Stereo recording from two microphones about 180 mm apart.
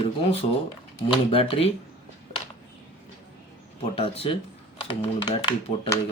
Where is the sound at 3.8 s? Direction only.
30° left (ahead or behind).